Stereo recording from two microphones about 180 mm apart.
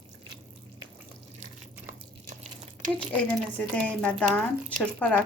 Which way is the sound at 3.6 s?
5° left (ahead or behind).